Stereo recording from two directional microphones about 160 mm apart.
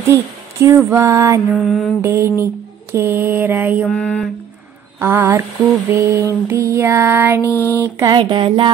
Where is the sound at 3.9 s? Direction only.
5° left (ahead or behind).